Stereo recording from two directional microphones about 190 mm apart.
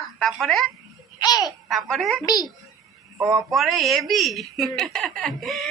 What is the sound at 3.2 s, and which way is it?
Speech, 15° right (ahead or behind).